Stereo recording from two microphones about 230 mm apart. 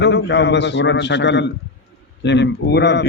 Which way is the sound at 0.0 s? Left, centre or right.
Left.